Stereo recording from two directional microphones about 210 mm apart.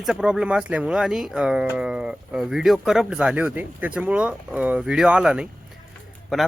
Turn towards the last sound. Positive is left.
turn(degrees=0)  # may be behind; listen again after turning